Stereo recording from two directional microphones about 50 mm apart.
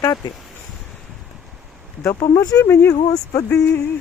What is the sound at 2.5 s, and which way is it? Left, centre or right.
Speech, left.